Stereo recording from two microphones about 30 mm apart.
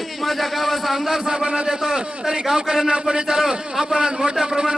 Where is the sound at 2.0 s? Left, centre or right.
Right.